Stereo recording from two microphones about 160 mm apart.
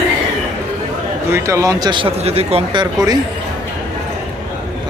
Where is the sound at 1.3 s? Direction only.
20° right (ahead or behind).